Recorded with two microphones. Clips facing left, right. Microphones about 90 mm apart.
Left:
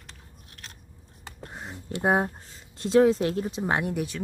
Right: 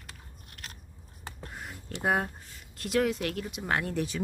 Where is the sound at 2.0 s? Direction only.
20° left (ahead or behind).